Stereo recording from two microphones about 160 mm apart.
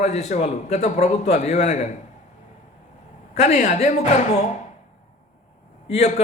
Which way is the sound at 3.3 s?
45° left (ahead or behind).